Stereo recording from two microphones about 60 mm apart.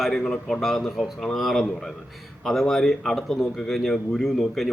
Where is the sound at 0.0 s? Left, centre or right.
Centre.